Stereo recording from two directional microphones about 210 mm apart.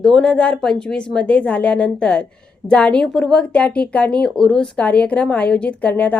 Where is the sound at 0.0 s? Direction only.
5° left (ahead or behind).